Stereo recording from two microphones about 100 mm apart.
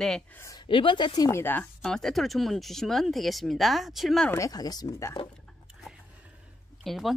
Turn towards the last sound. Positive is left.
turn(degrees=0)  # may be behind; listen again after turning